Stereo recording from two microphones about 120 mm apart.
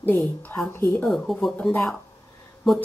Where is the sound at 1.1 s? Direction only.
5° left (ahead or behind).